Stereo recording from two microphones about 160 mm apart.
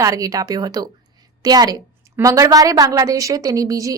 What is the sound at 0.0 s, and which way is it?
A woman's voice, 20° right (ahead or behind).